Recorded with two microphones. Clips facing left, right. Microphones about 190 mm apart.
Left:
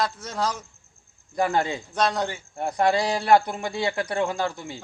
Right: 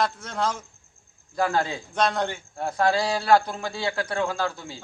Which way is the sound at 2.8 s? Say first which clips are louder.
Left 1 dB; 15° left (ahead or behind).